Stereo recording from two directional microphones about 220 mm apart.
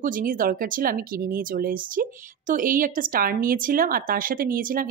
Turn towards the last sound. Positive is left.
turn(degrees=-40)  # may be behind; listen again after turning